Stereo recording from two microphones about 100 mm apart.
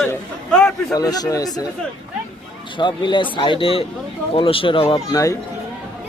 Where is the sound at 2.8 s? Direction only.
50° left (ahead or behind).